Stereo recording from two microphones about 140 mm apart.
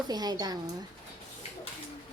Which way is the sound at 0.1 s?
30° right (ahead or behind).